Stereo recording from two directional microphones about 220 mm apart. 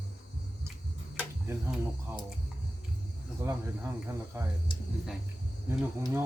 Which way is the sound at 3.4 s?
10° right (ahead or behind).